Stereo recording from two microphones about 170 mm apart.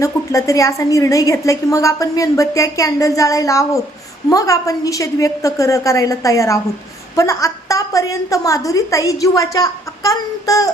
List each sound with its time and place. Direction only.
0.0 s a woman's voice: 20° left (ahead or behind)